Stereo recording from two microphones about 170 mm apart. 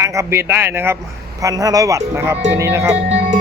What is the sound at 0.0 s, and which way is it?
A man's voice, 15° right (ahead or behind).